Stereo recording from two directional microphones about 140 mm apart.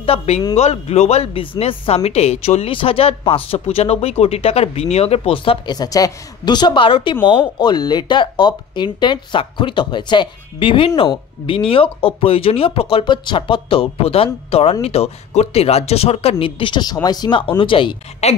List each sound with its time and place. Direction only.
0.0 s a man's voice: 45° left (ahead or behind)